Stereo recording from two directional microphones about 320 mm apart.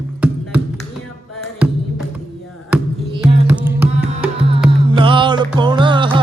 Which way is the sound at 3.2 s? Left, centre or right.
Centre.